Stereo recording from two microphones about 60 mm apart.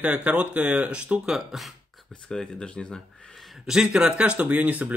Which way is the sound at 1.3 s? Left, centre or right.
Centre.